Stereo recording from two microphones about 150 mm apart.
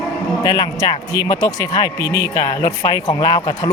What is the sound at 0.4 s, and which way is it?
Speech, 25° left (ahead or behind).